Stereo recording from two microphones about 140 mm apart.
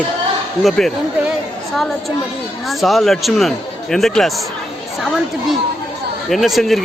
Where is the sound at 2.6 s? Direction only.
Centre (ahead or behind).